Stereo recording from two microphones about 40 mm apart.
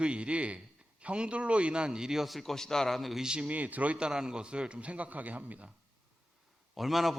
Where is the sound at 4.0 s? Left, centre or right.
Centre; by 5.7 s right.